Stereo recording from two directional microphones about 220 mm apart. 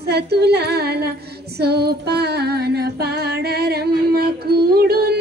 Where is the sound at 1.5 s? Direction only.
45° right (ahead or behind).